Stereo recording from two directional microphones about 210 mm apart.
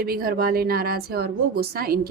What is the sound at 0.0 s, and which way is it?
A woman's voice, 45° right (ahead or behind).